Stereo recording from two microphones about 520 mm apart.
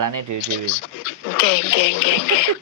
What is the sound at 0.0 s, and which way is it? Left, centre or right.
Speech, right.